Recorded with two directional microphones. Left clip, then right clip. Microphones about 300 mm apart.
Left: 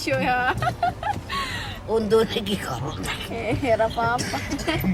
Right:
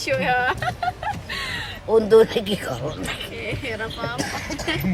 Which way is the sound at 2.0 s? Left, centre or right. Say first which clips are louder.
Right 5 dB; centre.